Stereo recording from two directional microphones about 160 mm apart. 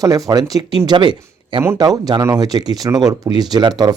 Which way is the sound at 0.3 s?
25° right (ahead or behind).